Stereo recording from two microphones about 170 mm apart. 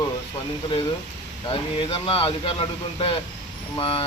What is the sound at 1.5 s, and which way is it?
Speech, 30° left (ahead or behind).